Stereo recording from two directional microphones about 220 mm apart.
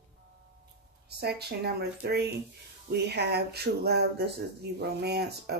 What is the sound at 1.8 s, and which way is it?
Speech, 50° right (ahead or behind).